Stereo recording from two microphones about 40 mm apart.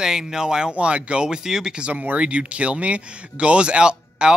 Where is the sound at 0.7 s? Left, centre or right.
Right.